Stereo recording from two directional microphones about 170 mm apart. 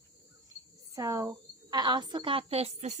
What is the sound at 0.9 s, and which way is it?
A woman's voice, 20° right (ahead or behind).